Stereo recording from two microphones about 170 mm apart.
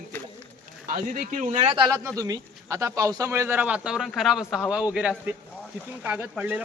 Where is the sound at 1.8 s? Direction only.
20° right (ahead or behind).